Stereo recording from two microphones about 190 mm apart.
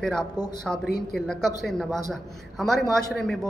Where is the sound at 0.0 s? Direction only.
5° left (ahead or behind).